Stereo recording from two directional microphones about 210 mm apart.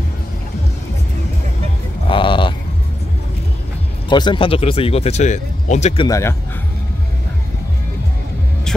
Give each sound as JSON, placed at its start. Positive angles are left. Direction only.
{"t": 2.0, "sound": "a sound", "side_deg": 25}
{"t": 4.1, "sound": "speech", "side_deg": 20}
{"t": 6.0, "sound": "speech", "side_deg": 15}